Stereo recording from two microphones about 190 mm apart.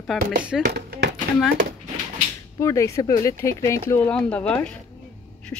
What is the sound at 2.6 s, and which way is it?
Speech, 15° left (ahead or behind).